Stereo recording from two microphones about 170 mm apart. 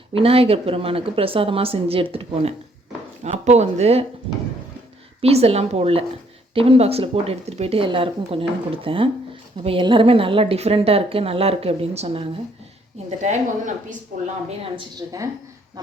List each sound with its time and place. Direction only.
0.2 s speech: 35° right (ahead or behind)
5.2 s a woman's voice: 35° right (ahead or behind)
14.6 s a woman's voice: 25° right (ahead or behind)